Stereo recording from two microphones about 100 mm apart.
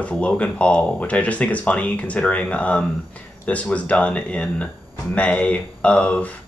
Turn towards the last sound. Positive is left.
turn(degrees=10)  # may be behind; listen again after turning